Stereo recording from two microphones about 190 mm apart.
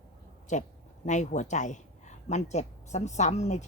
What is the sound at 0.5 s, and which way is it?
Speech, 40° left (ahead or behind).